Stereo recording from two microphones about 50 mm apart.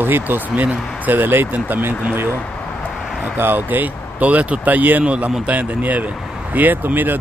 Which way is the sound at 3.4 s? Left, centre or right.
Right.